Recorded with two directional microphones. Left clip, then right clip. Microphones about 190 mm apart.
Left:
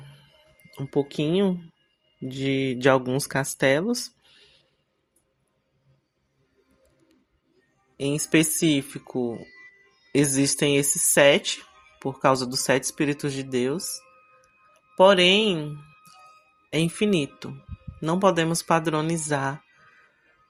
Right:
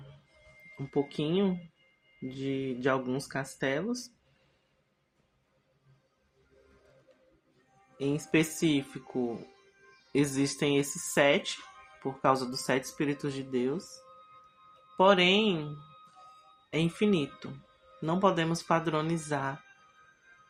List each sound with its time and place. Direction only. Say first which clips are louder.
0.9 s speech: left 6 dB; 55° left (ahead or behind)
7.9 s speech: left 6 dB; 50° left (ahead or behind)
14.9 s speech: left 7 dB; 50° left (ahead or behind)